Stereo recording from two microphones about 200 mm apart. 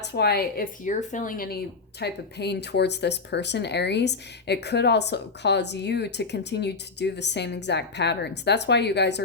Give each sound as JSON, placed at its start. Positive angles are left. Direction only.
{"t": 0.0, "sound": "speech", "side_deg": 55}